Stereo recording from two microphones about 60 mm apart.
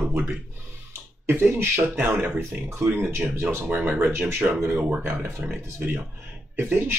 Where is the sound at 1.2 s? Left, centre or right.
Right.